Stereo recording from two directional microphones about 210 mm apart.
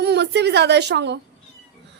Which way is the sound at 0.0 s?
50° right (ahead or behind).